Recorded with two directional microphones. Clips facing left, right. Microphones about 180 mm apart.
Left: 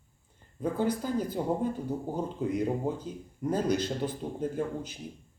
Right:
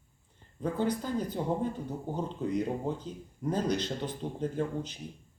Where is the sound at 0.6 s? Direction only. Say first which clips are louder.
Left 1 dB; 5° left (ahead or behind).